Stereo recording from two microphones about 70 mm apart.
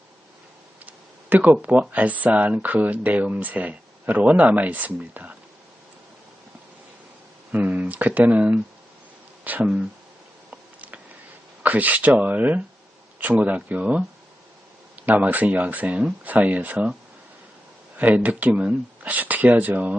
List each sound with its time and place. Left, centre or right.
0.9 s tick-tock: right
1.9 s speech: right
7.5 s speech: right
10.5 s insect: right
11.6 s speech: right
17.9 s speech: right